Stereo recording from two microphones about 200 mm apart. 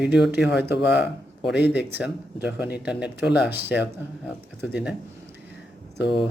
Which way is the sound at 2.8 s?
5° right (ahead or behind).